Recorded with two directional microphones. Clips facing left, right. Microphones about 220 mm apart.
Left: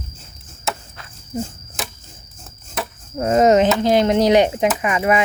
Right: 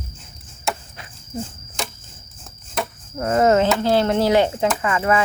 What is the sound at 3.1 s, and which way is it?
Speech, 20° left (ahead or behind).